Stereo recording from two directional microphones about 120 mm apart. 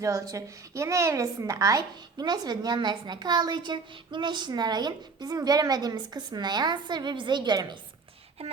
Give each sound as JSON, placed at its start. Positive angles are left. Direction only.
{"t": 0.0, "sound": "speech", "side_deg": -25}